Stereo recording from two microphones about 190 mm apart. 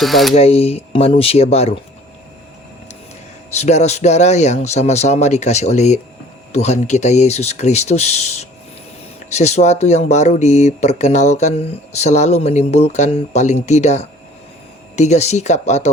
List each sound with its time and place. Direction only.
0.0 s speech: centre (ahead or behind)
0.3 s speech: 35° left (ahead or behind)
3.5 s speech: 35° left (ahead or behind)